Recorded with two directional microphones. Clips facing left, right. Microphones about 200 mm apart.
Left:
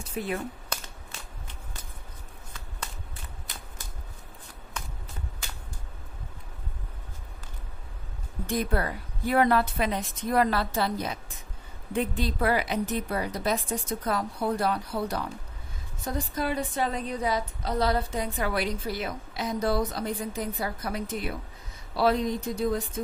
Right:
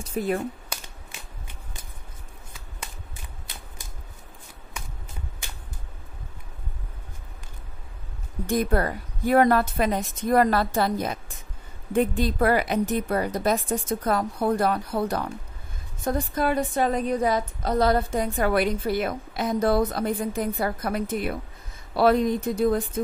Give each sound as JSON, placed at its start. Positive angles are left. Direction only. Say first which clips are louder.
{"t": 0.2, "sound": "a woman's voice", "louder": "right 6 dB", "side_deg": -45}
{"t": 0.7, "sound": "a sound", "louder": "left 1 dB", "side_deg": -10}
{"t": 8.5, "sound": "a woman's voice", "louder": "right 5 dB", "side_deg": -45}